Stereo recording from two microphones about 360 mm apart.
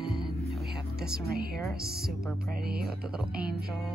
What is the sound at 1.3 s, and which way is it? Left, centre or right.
Speech, right.